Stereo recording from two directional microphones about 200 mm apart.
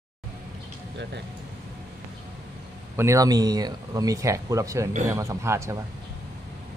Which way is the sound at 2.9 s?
15° right (ahead or behind).